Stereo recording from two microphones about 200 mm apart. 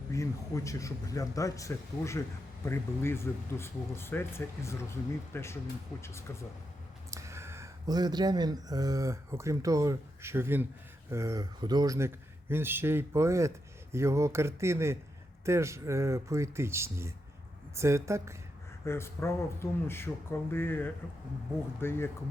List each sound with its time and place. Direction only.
0.1 s speech: 15° left (ahead or behind)
7.1 s speech: 15° right (ahead or behind)
18.9 s speech: 15° left (ahead or behind)